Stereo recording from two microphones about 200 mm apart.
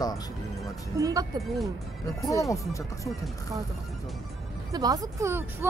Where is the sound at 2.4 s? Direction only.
15° left (ahead or behind).